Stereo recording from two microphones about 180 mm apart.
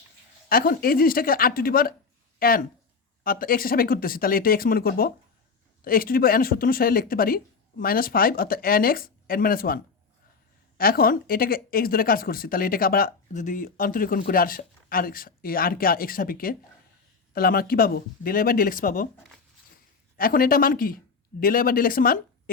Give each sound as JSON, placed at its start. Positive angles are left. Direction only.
{"t": 0.4, "sound": "speech", "side_deg": 55}
{"t": 20.1, "sound": "speech", "side_deg": 55}